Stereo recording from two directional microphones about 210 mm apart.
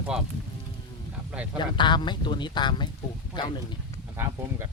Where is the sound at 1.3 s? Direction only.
5° right (ahead or behind).